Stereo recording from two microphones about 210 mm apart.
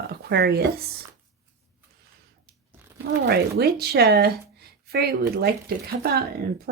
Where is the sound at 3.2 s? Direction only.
50° right (ahead or behind).